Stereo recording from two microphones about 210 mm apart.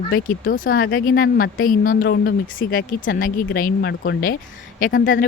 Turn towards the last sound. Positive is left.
turn(degrees=40)  # may be behind; listen again after turning